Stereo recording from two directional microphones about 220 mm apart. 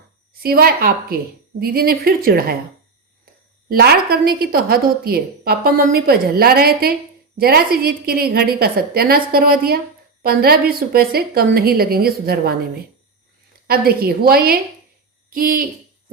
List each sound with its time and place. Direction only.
0.3 s a woman's voice: 45° right (ahead or behind)
3.7 s a woman's voice: 45° right (ahead or behind)